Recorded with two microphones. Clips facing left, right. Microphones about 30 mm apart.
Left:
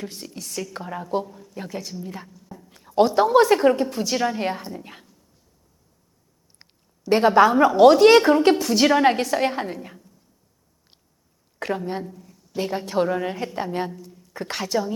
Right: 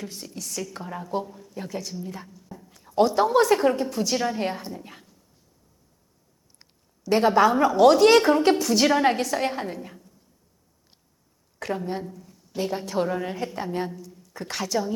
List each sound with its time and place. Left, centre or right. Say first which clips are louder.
0.0 s a woman's voice: left 2 dB; centre
2.3 s whispering: left 1 dB; centre
2.6 s a woman's voice: left 2 dB; centre
6.6 s a sound: left 4 dB; left
7.2 s a woman's voice: left 3 dB; centre
11.9 s a woman's voice: left 2 dB; centre